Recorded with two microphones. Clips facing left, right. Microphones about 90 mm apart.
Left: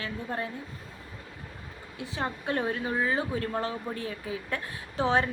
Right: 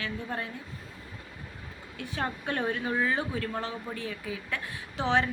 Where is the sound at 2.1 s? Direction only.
30° left (ahead or behind).